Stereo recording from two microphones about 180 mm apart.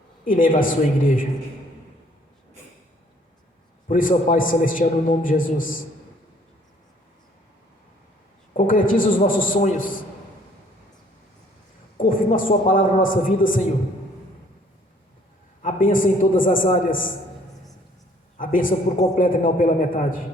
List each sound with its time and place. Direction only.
0.3 s a man's voice: 50° left (ahead or behind)
3.8 s a man's voice: 50° left (ahead or behind)
8.5 s a man's voice: 50° left (ahead or behind)
11.9 s a sound: 50° left (ahead or behind)
12.5 s a man's voice: 50° left (ahead or behind)
15.6 s a man's voice: 50° left (ahead or behind)
18.9 s a man's voice: 45° left (ahead or behind)